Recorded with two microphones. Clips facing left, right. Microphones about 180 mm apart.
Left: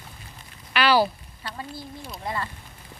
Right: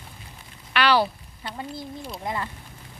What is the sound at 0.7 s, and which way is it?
Speech, 5° left (ahead or behind).